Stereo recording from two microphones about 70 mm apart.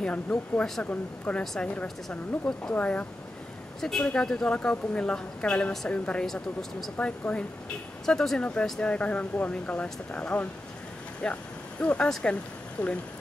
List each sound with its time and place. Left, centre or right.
0.0 s speech: centre
3.8 s speech: centre
6.2 s speech: centre
7.0 s speech: centre
12.1 s speech: centre
12.8 s speech: left